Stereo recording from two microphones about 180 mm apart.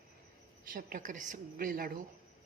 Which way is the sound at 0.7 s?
50° right (ahead or behind).